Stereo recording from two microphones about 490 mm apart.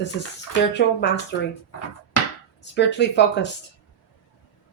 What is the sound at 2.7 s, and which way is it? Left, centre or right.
Speech, left.